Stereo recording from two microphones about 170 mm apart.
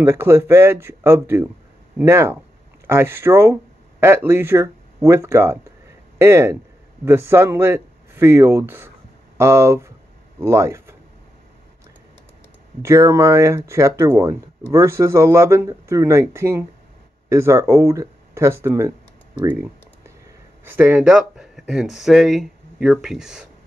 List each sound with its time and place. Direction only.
0.0 s speech: 15° right (ahead or behind)
12.8 s speech: 15° right (ahead or behind)
19.4 s typing: 10° right (ahead or behind)
20.6 s speech: 10° right (ahead or behind)